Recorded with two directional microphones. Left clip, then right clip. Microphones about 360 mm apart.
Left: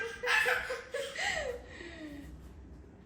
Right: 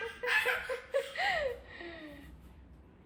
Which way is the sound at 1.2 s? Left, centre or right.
Centre.